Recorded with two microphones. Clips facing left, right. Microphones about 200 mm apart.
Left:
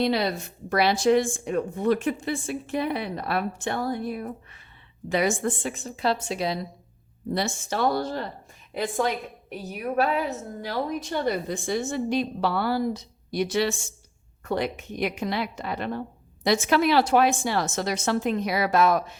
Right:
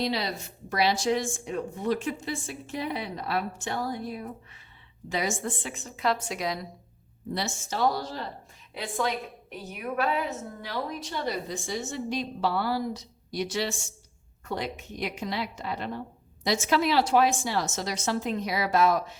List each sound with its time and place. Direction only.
0.0 s a woman's voice: 55° left (ahead or behind)
5.7 s a woman's voice: 30° left (ahead or behind)
7.3 s a woman's voice: 55° left (ahead or behind)
8.7 s a woman's voice: 45° left (ahead or behind)